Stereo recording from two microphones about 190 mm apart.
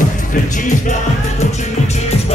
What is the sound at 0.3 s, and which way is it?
Music, 45° left (ahead or behind).